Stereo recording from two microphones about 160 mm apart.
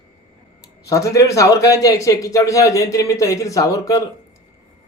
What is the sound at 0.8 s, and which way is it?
A man's voice, 20° left (ahead or behind).